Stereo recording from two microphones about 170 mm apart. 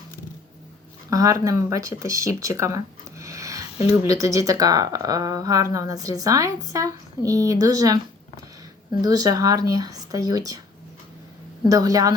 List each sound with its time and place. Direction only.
1.1 s speech: 20° right (ahead or behind)
9.0 s speech: 20° right (ahead or behind)
11.7 s speech: 20° right (ahead or behind)